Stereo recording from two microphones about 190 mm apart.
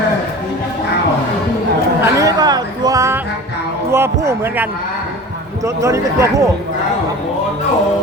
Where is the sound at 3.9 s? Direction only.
15° right (ahead or behind).